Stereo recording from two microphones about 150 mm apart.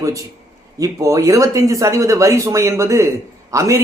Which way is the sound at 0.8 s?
20° right (ahead or behind).